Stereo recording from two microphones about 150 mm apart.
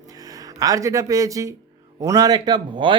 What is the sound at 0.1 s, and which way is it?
A man's voice, 25° right (ahead or behind).